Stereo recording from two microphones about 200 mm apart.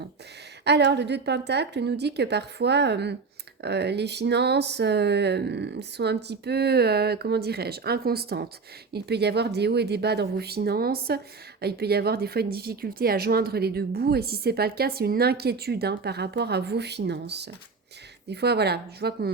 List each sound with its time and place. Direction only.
0.6 s a woman's voice: 55° right (ahead or behind)